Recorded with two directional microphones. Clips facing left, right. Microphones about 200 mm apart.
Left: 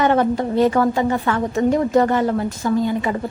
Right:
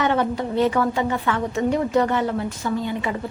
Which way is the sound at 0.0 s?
45° left (ahead or behind).